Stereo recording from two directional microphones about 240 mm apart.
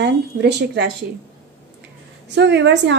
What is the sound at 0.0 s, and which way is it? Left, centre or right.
Speech, right.